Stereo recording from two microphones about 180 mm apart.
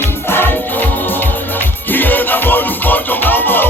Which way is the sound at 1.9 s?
10° left (ahead or behind).